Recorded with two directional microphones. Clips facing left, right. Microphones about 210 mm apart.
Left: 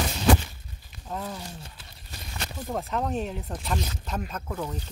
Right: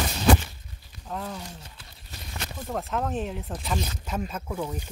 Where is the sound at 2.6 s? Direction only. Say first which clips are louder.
Even; centre (ahead or behind).